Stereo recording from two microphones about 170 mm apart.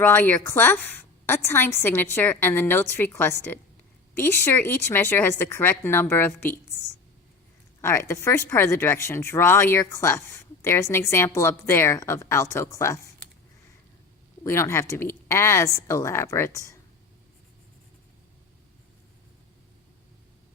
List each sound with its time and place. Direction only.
0.0 s speech: 10° left (ahead or behind)
7.8 s speech: 15° left (ahead or behind)
14.4 s speech: 15° left (ahead or behind)